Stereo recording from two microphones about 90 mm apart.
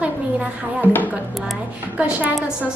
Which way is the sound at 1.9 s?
15° right (ahead or behind).